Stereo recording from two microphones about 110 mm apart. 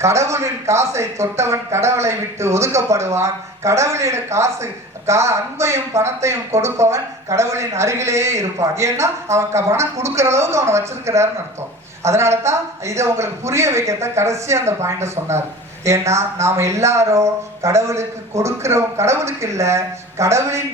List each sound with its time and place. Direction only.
0.0 s speech: 25° right (ahead or behind)